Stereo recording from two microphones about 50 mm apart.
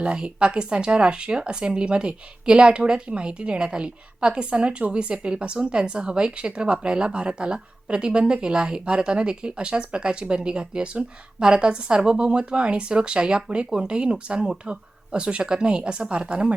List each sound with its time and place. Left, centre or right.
0.0 s speech: right